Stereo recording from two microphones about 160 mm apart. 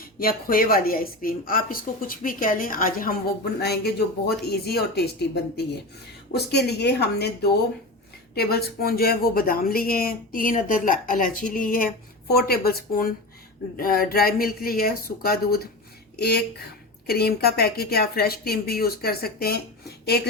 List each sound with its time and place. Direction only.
0.0 s a woman's voice: 65° left (ahead or behind); by 7.3 s 90° left
8.4 s a woman's voice: 75° left (ahead or behind); by 11.9 s 60° left (ahead or behind)
12.5 s speech: 70° left (ahead or behind)
16.1 s speech: 90° left
17.1 s speech: 80° left